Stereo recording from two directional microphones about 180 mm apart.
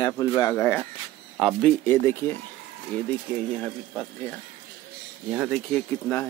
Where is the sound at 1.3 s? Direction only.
Centre (ahead or behind).